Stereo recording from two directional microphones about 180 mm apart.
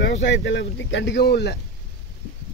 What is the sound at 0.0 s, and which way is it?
Speech, 90° left.